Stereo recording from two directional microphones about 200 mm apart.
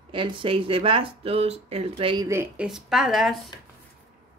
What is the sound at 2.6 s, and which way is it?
Speech, centre (ahead or behind).